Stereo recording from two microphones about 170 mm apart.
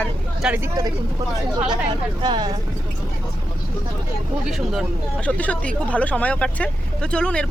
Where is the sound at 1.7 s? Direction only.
25° right (ahead or behind).